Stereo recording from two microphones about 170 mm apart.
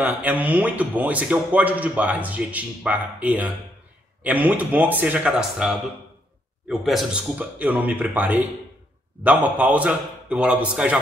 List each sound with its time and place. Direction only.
0.0 s speech: 10° right (ahead or behind)